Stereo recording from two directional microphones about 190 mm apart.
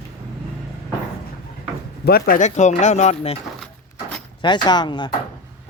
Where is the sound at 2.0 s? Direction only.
50° left (ahead or behind); by 3.4 s 35° left (ahead or behind).